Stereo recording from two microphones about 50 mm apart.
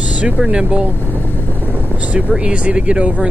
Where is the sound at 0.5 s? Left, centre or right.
Centre.